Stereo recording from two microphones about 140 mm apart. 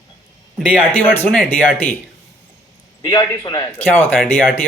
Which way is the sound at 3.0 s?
30° left (ahead or behind).